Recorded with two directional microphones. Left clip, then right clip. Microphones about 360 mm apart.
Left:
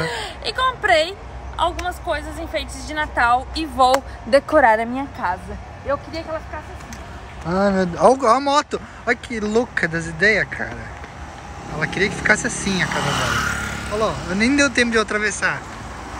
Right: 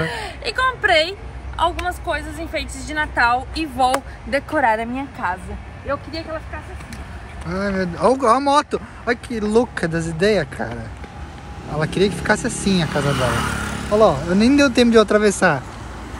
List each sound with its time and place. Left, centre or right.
0.1 s a woman's voice: centre
7.4 s a woman's voice: centre
11.8 s a woman's voice: centre
13.3 s vehicle: centre
13.9 s a woman's voice: centre